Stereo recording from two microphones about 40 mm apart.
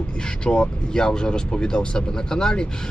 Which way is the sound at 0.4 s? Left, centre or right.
Left.